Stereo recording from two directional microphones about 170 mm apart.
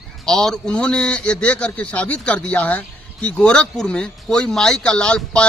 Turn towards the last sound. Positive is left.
turn(degrees=5)  # may be behind; listen again after turning